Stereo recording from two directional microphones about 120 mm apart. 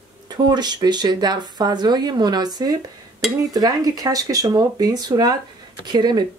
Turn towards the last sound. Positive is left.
turn(degrees=-40)  # may be behind; listen again after turning